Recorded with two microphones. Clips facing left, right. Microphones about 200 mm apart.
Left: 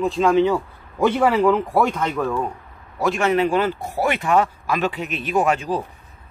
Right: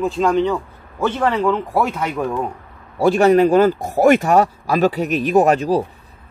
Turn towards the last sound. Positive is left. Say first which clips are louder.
# right 6 dB
turn(degrees=-40)  # may be behind; listen again after turning